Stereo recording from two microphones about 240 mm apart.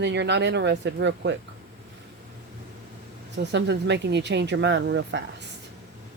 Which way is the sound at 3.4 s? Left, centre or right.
Right.